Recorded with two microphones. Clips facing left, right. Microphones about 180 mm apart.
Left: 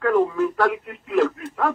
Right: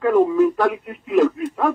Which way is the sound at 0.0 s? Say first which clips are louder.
Right 4 dB; 15° right (ahead or behind).